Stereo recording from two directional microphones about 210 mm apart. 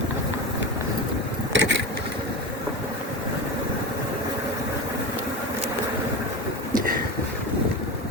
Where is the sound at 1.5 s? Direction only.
60° right (ahead or behind).